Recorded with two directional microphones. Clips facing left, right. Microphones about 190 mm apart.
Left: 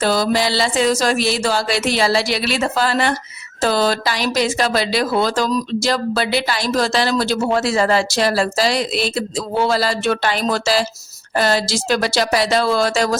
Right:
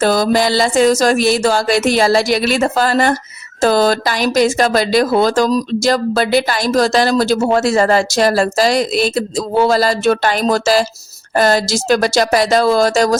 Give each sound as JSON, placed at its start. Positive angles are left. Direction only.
{"t": 0.0, "sound": "speech", "side_deg": -45}